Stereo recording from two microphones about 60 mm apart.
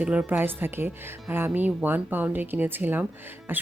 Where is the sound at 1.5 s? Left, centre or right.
Right.